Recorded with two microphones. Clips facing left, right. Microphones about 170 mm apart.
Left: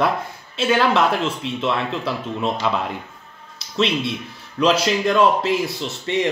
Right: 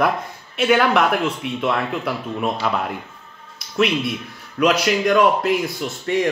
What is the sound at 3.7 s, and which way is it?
Speech, 25° left (ahead or behind).